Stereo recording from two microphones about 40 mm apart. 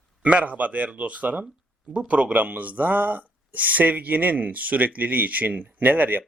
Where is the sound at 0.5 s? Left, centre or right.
Right.